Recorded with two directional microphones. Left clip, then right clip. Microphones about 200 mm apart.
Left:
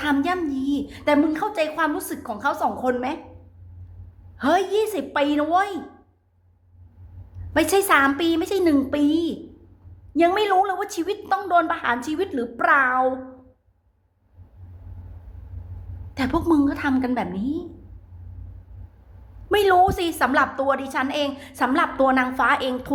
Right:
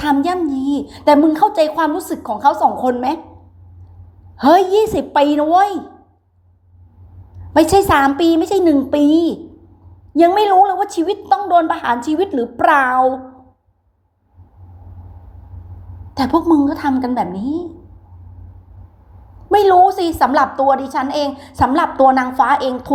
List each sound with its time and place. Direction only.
0.0 s a woman's voice: 15° right (ahead or behind)
4.4 s a woman's voice: 20° right (ahead or behind)
7.5 s a woman's voice: 15° right (ahead or behind)
16.1 s a woman's voice: 10° right (ahead or behind)
19.5 s a woman's voice: 10° right (ahead or behind)